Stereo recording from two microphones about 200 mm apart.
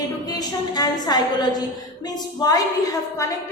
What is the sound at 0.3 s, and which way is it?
A woman's voice, 20° left (ahead or behind).